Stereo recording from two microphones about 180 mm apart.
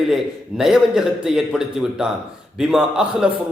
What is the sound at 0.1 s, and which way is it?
A man's voice, centre (ahead or behind).